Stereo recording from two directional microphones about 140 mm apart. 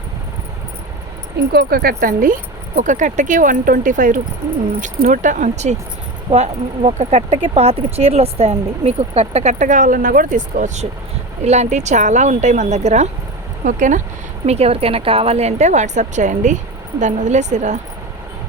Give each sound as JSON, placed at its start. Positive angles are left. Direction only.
{"t": 1.5, "sound": "speech", "side_deg": -90}
{"t": 6.3, "sound": "speech", "side_deg": -50}
{"t": 11.4, "sound": "speech", "side_deg": -50}
{"t": 14.4, "sound": "speech", "side_deg": -50}